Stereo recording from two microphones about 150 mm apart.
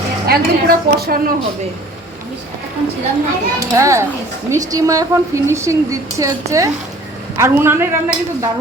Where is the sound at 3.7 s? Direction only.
20° right (ahead or behind).